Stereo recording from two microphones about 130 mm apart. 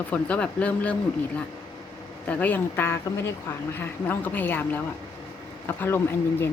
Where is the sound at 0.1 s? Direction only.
10° left (ahead or behind).